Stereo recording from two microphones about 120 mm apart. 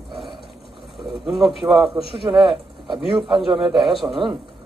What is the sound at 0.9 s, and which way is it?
Speech, centre (ahead or behind).